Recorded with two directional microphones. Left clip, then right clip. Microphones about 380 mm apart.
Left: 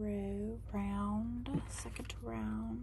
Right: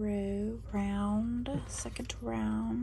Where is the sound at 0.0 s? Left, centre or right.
Centre.